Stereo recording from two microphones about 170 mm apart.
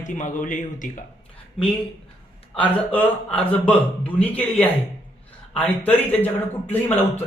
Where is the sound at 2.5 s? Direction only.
5° left (ahead or behind).